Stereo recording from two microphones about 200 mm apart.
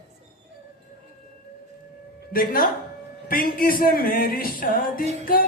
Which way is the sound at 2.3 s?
45° left (ahead or behind).